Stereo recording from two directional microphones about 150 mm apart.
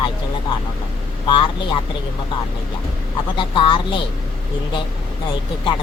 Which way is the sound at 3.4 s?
35° left (ahead or behind).